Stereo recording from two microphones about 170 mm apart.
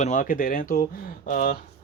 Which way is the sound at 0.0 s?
50° left (ahead or behind).